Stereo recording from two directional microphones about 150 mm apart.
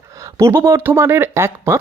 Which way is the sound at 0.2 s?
20° right (ahead or behind).